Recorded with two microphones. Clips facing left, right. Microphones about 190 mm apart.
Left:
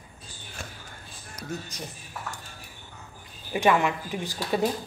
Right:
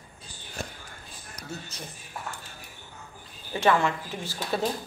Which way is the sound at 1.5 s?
15° left (ahead or behind).